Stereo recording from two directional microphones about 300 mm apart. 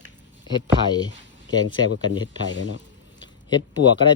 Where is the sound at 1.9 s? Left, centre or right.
Left.